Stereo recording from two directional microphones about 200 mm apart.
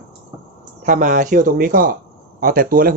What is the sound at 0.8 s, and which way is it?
Speech, 40° right (ahead or behind).